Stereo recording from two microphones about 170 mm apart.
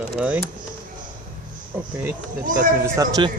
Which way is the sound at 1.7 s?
10° right (ahead or behind).